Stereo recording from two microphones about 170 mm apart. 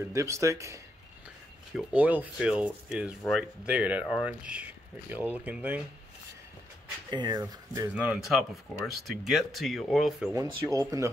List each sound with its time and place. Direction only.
0.1 s speech: 15° right (ahead or behind)
1.8 s speech: 10° right (ahead or behind)
7.1 s speech: 25° right (ahead or behind)
7.9 s speech: 5° right (ahead or behind)
10.3 s speech: 20° right (ahead or behind)